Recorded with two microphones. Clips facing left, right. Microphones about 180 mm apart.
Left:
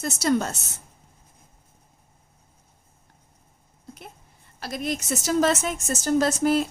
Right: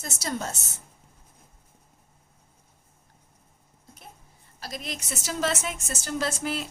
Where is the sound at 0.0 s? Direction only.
65° left (ahead or behind).